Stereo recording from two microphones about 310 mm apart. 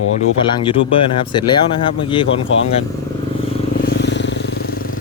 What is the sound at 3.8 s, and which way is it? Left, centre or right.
Vehicle, left.